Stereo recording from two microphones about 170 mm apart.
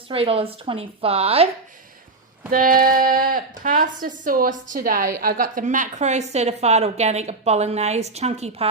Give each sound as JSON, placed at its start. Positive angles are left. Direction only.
{"t": 0.1, "sound": "a woman's voice", "side_deg": -35}
{"t": 2.5, "sound": "a woman's voice", "side_deg": -55}